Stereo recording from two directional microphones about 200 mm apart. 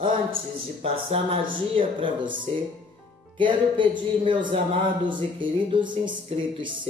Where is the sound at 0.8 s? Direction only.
30° right (ahead or behind).